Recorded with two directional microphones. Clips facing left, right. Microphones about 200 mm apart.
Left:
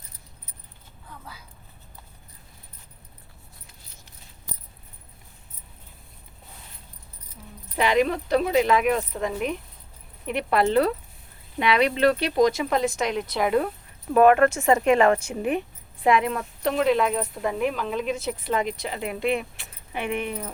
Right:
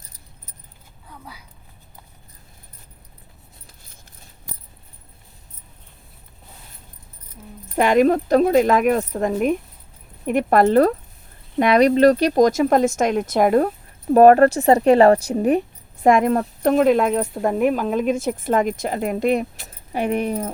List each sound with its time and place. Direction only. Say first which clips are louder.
7.8 s a woman's voice: right 6 dB; 45° right (ahead or behind)